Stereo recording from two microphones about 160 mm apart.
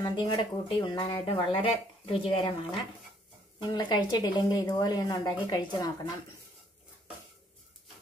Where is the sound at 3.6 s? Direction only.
25° left (ahead or behind).